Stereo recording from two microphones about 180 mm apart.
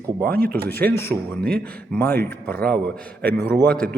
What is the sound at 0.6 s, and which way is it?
A man's voice, 10° left (ahead or behind).